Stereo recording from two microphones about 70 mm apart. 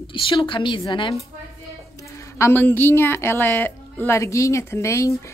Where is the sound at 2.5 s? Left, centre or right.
Left.